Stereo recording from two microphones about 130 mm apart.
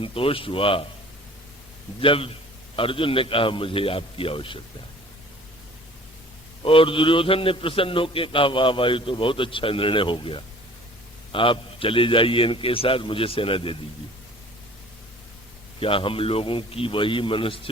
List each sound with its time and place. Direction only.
0.0 s a man's voice: 45° left (ahead or behind)
2.0 s a man's voice: 45° left (ahead or behind)
6.6 s a man's voice: 45° left (ahead or behind)
15.8 s a man's voice: 45° left (ahead or behind)